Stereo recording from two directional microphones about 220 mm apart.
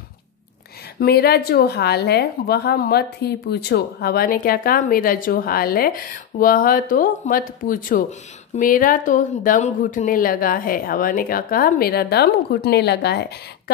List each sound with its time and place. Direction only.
0.9 s a woman's voice: 45° left (ahead or behind)